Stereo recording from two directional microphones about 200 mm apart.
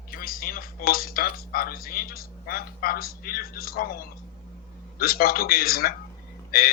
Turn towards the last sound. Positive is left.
turn(degrees=50)  # may be behind; listen again after turning